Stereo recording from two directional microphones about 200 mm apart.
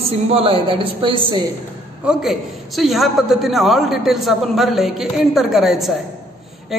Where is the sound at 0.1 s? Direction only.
30° right (ahead or behind).